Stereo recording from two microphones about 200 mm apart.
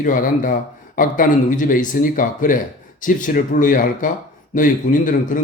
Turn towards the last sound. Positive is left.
turn(degrees=40)  # may be behind; listen again after turning